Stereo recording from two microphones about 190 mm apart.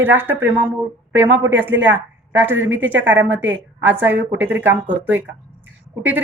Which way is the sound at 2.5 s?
85° right.